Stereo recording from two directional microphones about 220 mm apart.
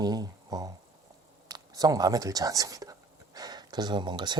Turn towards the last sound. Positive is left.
turn(degrees=-20)  # may be behind; listen again after turning